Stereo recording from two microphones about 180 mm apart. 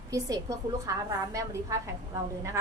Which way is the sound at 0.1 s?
20° right (ahead or behind).